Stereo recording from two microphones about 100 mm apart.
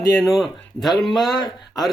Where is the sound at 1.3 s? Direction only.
45° left (ahead or behind).